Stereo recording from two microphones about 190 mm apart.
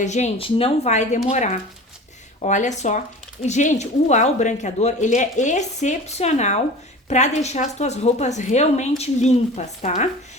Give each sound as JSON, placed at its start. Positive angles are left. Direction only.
{"t": 0.0, "sound": "speech", "side_deg": 40}